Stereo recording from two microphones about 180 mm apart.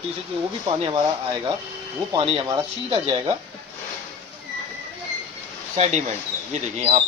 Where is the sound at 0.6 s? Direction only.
25° right (ahead or behind).